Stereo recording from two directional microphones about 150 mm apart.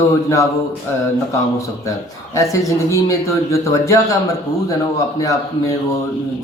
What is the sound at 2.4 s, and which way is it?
Speech, 20° left (ahead or behind).